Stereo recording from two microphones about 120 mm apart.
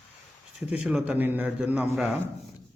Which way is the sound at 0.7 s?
5° right (ahead or behind).